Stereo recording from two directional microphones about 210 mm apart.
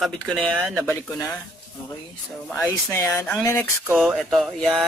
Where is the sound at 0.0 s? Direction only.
Centre (ahead or behind).